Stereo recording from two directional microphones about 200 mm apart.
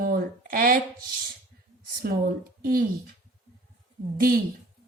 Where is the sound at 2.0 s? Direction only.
50° right (ahead or behind).